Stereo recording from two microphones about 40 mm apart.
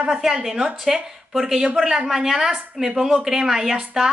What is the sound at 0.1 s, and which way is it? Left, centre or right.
Speech, centre.